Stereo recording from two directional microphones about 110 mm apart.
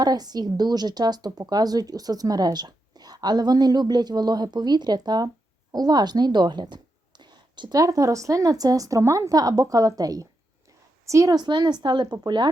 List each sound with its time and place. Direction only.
0.0 s a woman's voice: 40° right (ahead or behind)